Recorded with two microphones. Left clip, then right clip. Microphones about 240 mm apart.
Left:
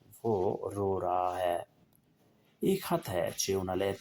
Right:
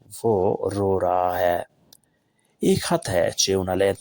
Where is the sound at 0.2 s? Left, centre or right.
Right.